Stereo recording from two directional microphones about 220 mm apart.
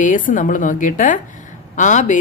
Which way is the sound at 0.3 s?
35° left (ahead or behind).